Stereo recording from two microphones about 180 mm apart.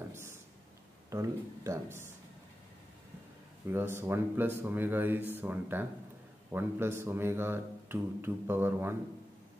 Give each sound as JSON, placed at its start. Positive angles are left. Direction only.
{"t": 0.1, "sound": "a sound", "side_deg": -15}
{"t": 1.1, "sound": "speech", "side_deg": -15}
{"t": 3.7, "sound": "speech", "side_deg": -15}